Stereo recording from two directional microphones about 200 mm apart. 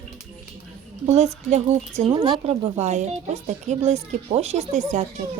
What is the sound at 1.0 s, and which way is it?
Speech, 35° right (ahead or behind).